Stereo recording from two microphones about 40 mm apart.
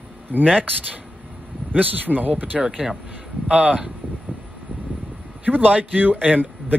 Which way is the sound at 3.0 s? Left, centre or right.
Right.